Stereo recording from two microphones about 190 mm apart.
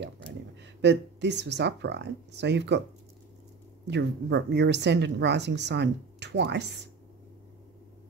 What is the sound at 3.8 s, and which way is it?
Speech, 65° right (ahead or behind).